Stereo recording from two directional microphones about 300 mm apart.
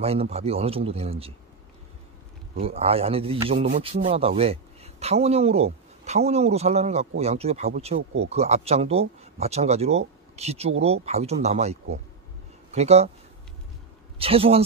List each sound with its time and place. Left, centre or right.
0.0 s speech: centre
2.5 s speech: centre
14.1 s speech: centre